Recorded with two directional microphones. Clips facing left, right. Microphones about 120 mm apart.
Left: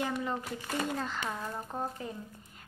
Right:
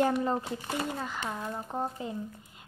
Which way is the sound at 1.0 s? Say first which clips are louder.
Even; 10° right (ahead or behind).